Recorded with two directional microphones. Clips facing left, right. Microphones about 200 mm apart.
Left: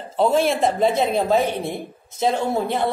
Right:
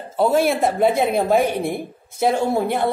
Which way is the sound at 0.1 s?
10° right (ahead or behind).